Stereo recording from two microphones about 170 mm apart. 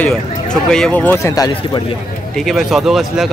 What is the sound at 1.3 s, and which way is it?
Speech, 25° left (ahead or behind).